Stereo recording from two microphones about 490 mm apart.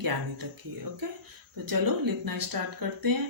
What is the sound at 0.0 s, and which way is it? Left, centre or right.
Speech, right.